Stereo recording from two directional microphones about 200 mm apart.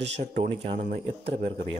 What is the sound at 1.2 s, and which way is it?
Speech, 30° right (ahead or behind).